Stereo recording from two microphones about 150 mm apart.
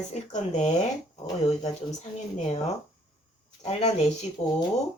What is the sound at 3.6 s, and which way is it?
Speech, 45° left (ahead or behind).